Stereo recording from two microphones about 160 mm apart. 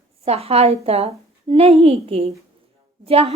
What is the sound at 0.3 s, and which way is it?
A woman's voice, 40° right (ahead or behind).